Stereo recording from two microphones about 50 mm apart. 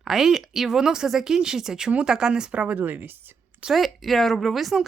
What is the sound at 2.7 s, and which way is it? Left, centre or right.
Speech, right.